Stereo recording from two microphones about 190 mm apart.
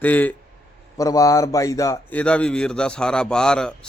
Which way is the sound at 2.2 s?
5° left (ahead or behind).